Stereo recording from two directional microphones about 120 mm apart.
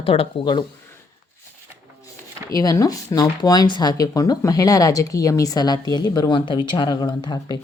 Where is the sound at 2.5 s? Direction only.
30° left (ahead or behind).